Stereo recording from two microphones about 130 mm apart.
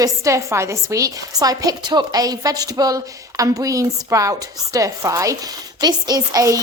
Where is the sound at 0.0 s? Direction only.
25° right (ahead or behind).